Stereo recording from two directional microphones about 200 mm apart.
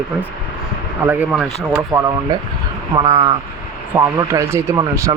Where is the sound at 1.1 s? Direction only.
10° right (ahead or behind).